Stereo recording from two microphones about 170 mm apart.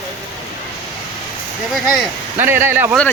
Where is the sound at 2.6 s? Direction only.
10° right (ahead or behind).